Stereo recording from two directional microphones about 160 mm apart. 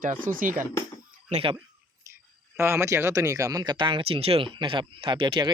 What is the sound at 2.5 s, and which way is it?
Speech, 15° right (ahead or behind).